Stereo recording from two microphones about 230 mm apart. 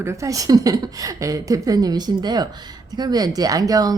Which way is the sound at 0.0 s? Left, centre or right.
Centre.